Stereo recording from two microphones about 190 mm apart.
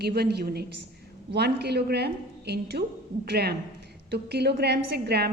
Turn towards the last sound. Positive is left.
turn(degrees=-60)  # may be behind; listen again after turning